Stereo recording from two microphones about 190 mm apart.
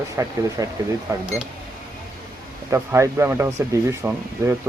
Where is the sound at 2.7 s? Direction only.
15° right (ahead or behind).